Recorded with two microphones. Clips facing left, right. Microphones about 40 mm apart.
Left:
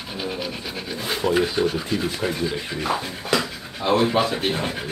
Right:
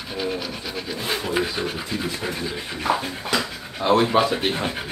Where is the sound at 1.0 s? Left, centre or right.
Centre.